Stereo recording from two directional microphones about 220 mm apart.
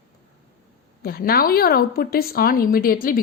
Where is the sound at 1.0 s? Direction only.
45° left (ahead or behind).